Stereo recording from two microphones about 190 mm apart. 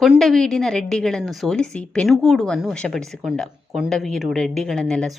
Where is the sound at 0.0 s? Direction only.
Centre (ahead or behind).